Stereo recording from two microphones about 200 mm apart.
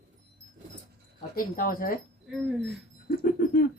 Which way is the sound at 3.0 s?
45° left (ahead or behind).